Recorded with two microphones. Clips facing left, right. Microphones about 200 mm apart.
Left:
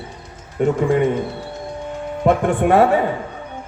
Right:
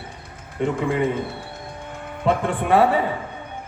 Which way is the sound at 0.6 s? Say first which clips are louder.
Left 5 dB; 45° left (ahead or behind).